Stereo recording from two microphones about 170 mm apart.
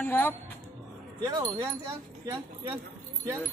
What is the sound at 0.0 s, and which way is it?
Speech, 10° left (ahead or behind).